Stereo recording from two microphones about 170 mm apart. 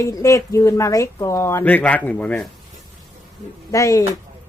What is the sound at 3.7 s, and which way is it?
Speech, 20° left (ahead or behind).